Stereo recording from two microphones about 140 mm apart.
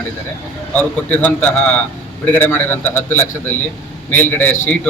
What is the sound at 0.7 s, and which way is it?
Speech, 10° left (ahead or behind).